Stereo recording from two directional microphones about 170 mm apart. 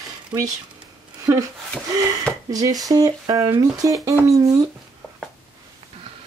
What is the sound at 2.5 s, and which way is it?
Speech, 20° right (ahead or behind).